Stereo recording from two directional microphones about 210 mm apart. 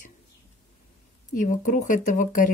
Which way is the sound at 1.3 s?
40° left (ahead or behind).